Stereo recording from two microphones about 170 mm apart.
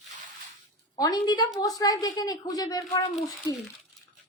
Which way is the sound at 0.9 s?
25° left (ahead or behind).